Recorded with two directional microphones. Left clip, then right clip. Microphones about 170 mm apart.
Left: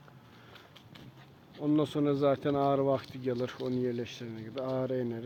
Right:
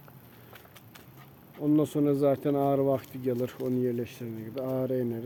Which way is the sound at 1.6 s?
20° right (ahead or behind).